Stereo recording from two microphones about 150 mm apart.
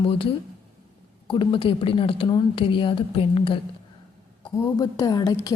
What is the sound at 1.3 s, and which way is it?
A woman's voice, 35° left (ahead or behind).